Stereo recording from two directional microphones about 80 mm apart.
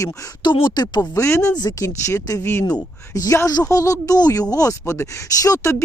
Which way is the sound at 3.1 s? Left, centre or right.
Left.